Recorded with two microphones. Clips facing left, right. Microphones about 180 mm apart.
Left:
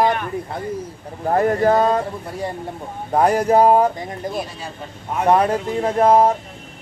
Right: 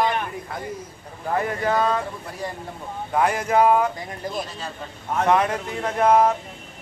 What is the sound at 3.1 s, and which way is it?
Speech, 40° left (ahead or behind).